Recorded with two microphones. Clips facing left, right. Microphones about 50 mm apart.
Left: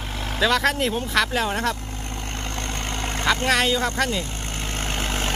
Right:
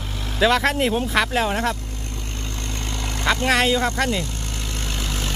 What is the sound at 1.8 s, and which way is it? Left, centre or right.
Vehicle, left.